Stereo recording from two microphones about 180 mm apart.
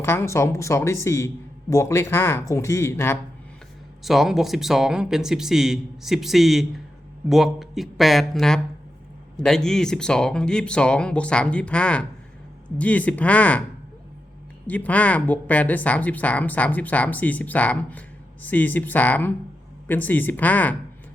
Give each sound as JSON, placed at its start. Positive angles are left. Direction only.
{"t": 0.0, "sound": "speech", "side_deg": 15}
{"t": 4.0, "sound": "speech", "side_deg": 0}
{"t": 14.7, "sound": "speech", "side_deg": 10}